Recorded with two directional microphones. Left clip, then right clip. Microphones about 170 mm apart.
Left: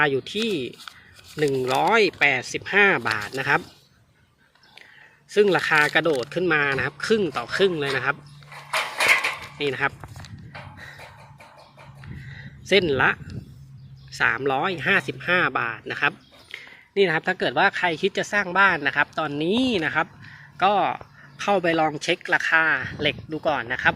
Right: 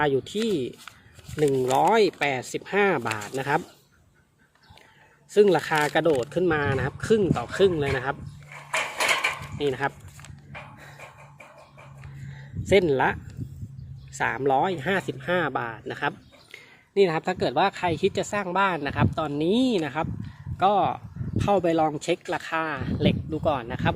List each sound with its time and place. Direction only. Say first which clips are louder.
0.0 s speech: left 2 dB; 10° right (ahead or behind)
5.3 s speech: left 1 dB; 15° right (ahead or behind)
9.6 s speech: left 2 dB; 15° right (ahead or behind)
12.6 s speech: left 1 dB; 15° right (ahead or behind)